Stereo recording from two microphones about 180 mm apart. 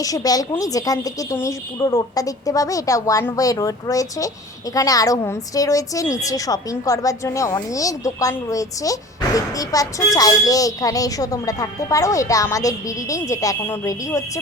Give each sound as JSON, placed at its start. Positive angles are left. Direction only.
{"t": 0.0, "sound": "a woman's voice", "side_deg": 20}